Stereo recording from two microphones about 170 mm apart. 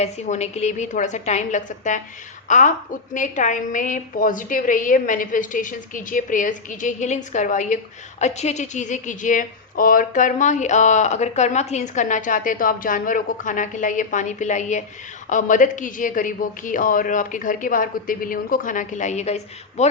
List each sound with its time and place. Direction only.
0.0 s a woman's voice: 40° left (ahead or behind)